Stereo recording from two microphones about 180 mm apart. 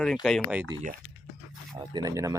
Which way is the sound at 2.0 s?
20° right (ahead or behind).